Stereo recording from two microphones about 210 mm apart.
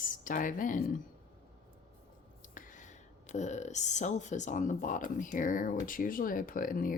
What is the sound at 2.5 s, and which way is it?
Speech, 35° left (ahead or behind).